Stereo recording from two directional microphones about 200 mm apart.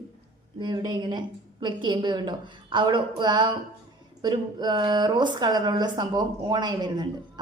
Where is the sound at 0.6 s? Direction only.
25° right (ahead or behind).